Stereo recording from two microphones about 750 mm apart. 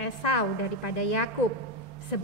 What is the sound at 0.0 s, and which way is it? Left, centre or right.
A woman's voice, left.